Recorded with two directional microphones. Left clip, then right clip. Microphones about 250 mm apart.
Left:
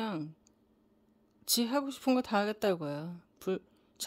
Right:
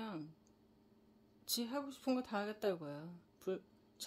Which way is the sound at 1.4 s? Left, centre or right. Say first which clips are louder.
Left 10 dB; left.